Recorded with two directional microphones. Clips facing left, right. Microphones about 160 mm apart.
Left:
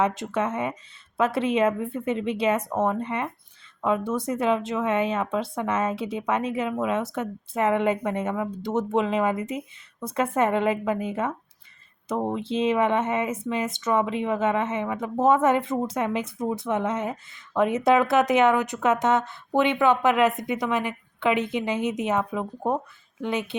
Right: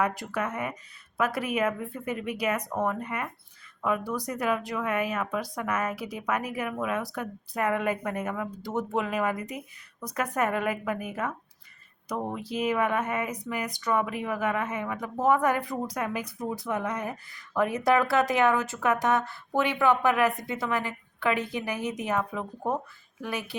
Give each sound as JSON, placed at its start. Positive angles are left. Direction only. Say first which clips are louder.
{"t": 0.0, "sound": "speech", "louder": "left 4 dB", "side_deg": 20}